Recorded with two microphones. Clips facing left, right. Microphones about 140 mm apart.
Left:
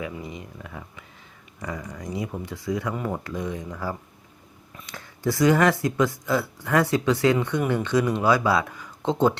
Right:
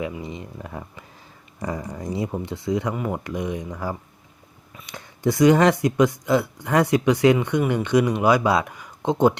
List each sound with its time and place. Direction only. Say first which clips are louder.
0.0 s speech: right 4 dB; 25° right (ahead or behind)